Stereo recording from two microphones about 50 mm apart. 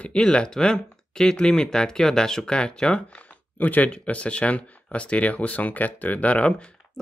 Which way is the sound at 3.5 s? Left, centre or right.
Left.